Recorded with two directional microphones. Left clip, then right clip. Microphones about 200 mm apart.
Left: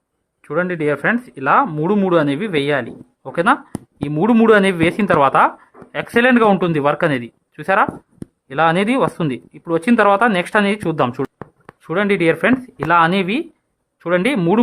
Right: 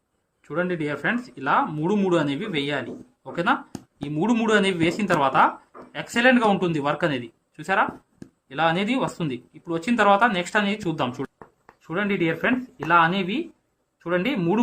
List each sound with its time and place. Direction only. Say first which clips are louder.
0.4 s speech: left 8 dB; 40° left (ahead or behind)